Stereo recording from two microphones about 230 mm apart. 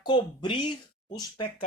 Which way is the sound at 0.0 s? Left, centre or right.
Left.